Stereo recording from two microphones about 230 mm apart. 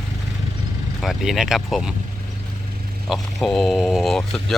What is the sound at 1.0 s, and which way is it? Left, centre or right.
Speech, centre.